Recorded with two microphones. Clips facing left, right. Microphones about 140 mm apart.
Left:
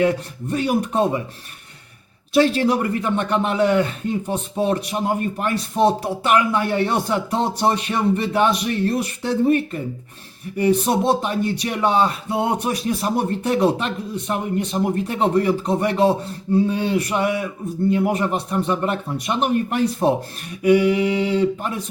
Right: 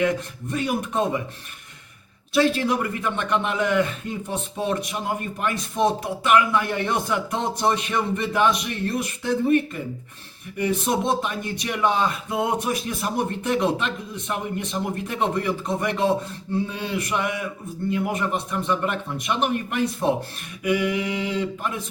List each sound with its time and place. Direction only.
0.5 s speech: 35° left (ahead or behind)
2.3 s speech: 40° left (ahead or behind)
10.6 s speech: 35° left (ahead or behind)